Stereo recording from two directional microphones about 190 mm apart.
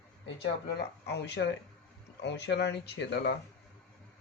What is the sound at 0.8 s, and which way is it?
Speech, 60° left (ahead or behind).